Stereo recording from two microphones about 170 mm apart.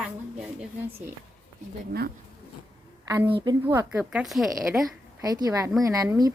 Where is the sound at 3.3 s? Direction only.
30° right (ahead or behind).